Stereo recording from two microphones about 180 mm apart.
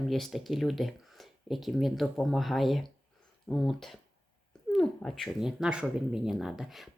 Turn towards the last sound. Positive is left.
turn(degrees=0)  # may be behind; listen again after turning